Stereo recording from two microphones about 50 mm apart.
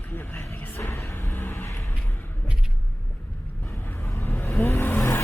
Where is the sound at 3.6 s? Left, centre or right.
Left.